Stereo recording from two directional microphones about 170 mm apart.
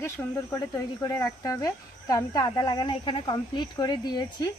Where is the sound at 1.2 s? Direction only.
20° left (ahead or behind).